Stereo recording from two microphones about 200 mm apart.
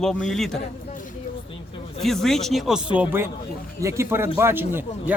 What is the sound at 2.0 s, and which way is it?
A man's voice, centre (ahead or behind).